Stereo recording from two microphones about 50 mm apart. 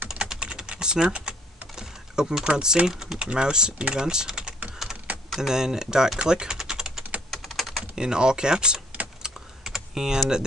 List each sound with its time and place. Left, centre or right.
0.1 s typing: centre
1.8 s speech: centre
3.2 s speech: centre
7.2 s typing: centre
7.9 s speech: centre
9.2 s typing: centre